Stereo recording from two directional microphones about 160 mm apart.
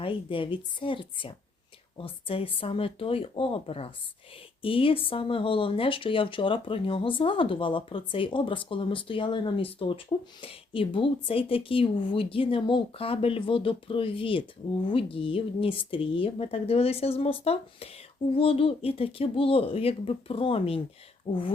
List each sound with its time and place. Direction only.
0.0 s speech: 35° left (ahead or behind)